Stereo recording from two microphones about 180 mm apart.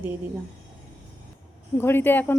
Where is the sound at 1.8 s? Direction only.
10° left (ahead or behind).